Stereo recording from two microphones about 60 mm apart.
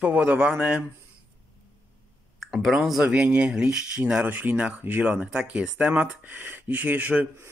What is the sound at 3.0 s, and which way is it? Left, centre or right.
Speech, centre.